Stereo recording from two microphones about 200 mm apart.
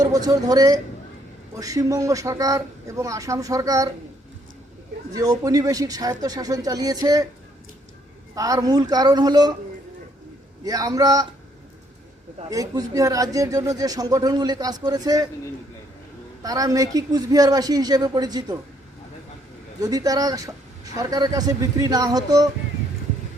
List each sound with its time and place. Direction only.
0.0 s speech: 20° right (ahead or behind)
5.1 s speech: 20° right (ahead or behind)
8.4 s a woman's voice: 15° right (ahead or behind)
10.6 s speech: 20° right (ahead or behind)
12.5 s speech: 20° right (ahead or behind)
16.4 s a woman's voice: 20° right (ahead or behind)
19.8 s speech: 20° right (ahead or behind)